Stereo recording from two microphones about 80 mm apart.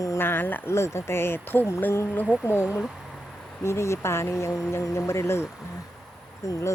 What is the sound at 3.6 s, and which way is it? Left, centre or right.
A woman's voice, left.